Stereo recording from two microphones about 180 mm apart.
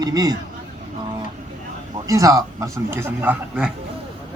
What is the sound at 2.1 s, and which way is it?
Speech, 20° right (ahead or behind).